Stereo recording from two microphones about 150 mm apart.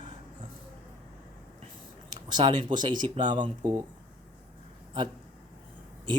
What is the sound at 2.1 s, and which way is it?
Speech, 30° right (ahead or behind).